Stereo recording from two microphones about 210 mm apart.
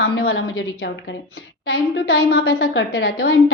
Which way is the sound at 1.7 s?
65° left (ahead or behind).